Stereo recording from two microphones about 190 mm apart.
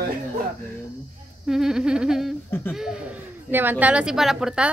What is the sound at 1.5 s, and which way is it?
A woman's voice, 5° right (ahead or behind).